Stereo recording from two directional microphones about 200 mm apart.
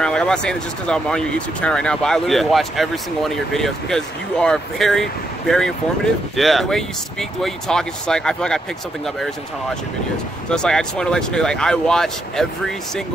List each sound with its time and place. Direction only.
0.0 s speech: 5° left (ahead or behind)
6.3 s speech: centre (ahead or behind)
10.5 s speech: 5° left (ahead or behind)